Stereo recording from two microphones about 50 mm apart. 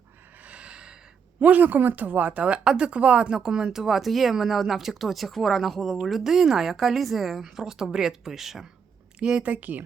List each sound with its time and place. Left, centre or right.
0.4 s gasp: right
1.4 s speech: right; by 8.6 s centre
9.1 s a woman's voice: centre
9.4 s speech: right